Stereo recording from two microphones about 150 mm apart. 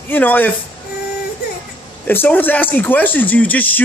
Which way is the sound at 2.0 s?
15° left (ahead or behind).